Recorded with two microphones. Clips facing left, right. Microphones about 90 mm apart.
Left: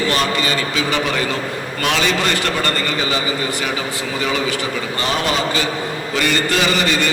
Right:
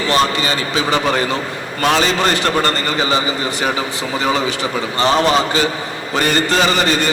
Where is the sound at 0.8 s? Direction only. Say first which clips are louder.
Right 6 dB; 35° right (ahead or behind).